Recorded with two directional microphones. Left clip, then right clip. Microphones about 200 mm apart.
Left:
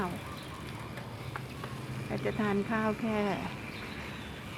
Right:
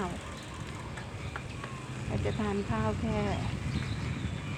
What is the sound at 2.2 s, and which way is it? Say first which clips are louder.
A woman's voice: left 2 dB; 15° left (ahead or behind).